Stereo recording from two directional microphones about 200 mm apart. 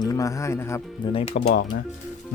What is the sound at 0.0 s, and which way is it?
Speech, 15° left (ahead or behind).